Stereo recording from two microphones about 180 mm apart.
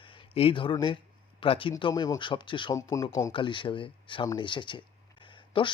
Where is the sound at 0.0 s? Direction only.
30° left (ahead or behind).